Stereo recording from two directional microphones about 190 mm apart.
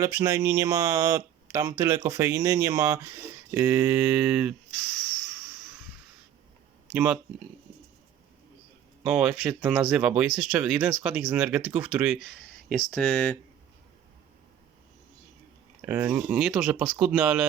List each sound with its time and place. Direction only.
0.0 s speech: 15° right (ahead or behind)
6.9 s speech: 10° right (ahead or behind)
9.0 s speech: 5° right (ahead or behind)
15.8 s speech: 10° right (ahead or behind)